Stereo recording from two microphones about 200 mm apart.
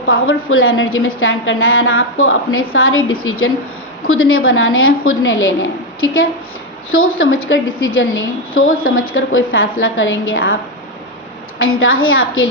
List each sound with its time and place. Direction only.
0.1 s a woman's voice: 90° left
6.9 s a woman's voice: 85° left
11.6 s a woman's voice: 90° left